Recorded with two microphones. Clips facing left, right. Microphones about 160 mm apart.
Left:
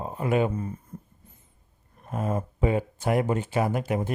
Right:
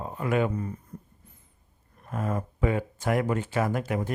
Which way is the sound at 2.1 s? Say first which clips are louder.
Left 2 dB; 20° left (ahead or behind).